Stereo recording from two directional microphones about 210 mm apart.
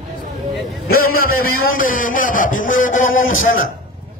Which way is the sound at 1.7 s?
40° left (ahead or behind).